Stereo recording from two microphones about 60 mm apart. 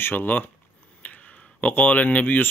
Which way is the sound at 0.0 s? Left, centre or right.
Left.